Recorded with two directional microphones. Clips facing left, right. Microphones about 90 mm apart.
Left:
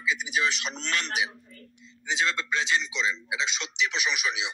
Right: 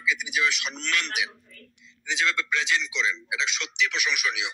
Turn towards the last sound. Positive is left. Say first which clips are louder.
# right 1 dB
turn(degrees=25)  # may be behind; listen again after turning